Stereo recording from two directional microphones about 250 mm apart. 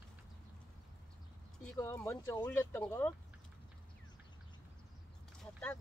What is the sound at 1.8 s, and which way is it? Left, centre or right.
Speech, centre.